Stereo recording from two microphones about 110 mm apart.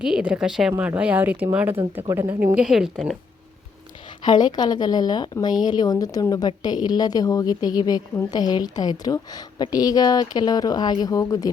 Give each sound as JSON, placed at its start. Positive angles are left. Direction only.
{"t": 0.0, "sound": "speech", "side_deg": -5}
{"t": 2.6, "sound": "speech", "side_deg": -5}
{"t": 4.3, "sound": "a woman's voice", "side_deg": 40}